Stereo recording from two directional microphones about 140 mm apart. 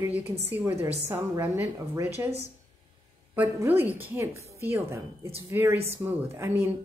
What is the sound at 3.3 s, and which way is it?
A woman's voice, 15° right (ahead or behind).